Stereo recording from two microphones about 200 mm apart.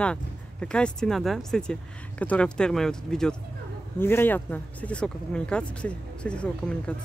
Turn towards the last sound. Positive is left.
turn(degrees=5)  # may be behind; listen again after turning